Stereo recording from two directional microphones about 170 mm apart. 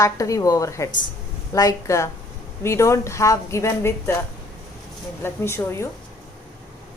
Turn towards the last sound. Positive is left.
turn(degrees=15)  # may be behind; listen again after turning